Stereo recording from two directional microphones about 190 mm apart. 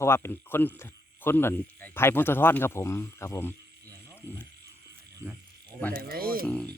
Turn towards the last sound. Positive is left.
turn(degrees=5)  # may be behind; listen again after turning